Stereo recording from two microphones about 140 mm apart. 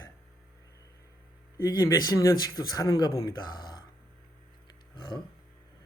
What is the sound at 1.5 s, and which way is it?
Speech, 25° left (ahead or behind).